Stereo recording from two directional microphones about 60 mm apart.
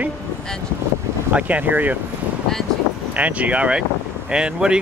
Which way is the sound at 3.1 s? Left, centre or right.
Right.